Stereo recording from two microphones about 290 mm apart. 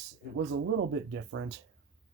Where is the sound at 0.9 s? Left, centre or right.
Right.